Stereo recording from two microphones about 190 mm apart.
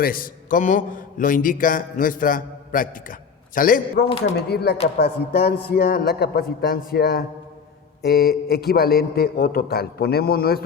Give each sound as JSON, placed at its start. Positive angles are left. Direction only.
{"t": 0.0, "sound": "a man's voice", "side_deg": 50}
{"t": 4.2, "sound": "a man's voice", "side_deg": 60}